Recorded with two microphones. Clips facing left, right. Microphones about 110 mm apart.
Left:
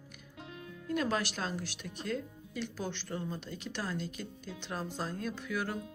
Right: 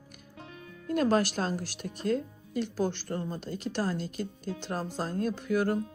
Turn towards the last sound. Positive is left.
turn(degrees=-45)  # may be behind; listen again after turning